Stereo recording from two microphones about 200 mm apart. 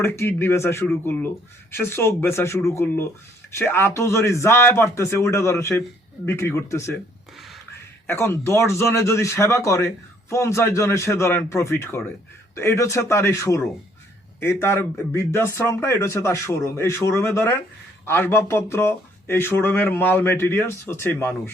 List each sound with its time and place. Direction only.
0.0 s speech: 10° left (ahead or behind)
8.0 s speech: 10° left (ahead or behind)